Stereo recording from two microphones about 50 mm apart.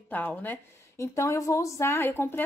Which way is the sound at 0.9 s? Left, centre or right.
Left.